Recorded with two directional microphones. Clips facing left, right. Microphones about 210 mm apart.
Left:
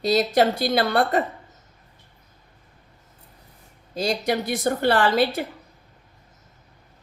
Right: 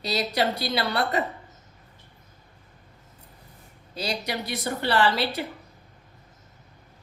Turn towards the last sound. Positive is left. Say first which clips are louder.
# left 4 dB
turn(degrees=50)  # may be behind; listen again after turning